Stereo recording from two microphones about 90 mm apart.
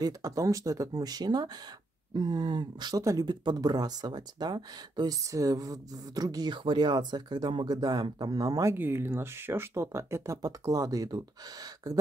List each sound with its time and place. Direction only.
0.0 s speech: 40° right (ahead or behind)
3.0 s speech: 35° right (ahead or behind)
3.3 s speech: 50° right (ahead or behind)
6.5 s speech: 60° right (ahead or behind); by 8.7 s 40° right (ahead or behind)
8.7 s speech: 25° right (ahead or behind); by 11.2 s 45° right (ahead or behind)